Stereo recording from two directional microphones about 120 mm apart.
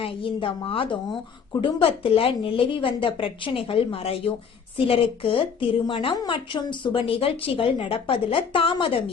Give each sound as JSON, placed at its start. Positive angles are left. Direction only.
{"t": 0.0, "sound": "a woman's voice", "side_deg": 45}